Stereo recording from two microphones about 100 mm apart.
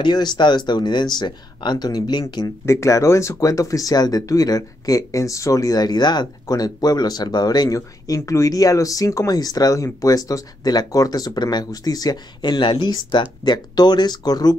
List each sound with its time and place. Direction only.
0.0 s speech: 45° left (ahead or behind)
2.6 s speech: 30° left (ahead or behind)